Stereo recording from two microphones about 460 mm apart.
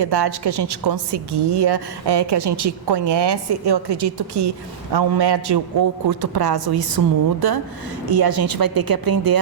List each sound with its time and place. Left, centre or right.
0.0 s a woman's voice: right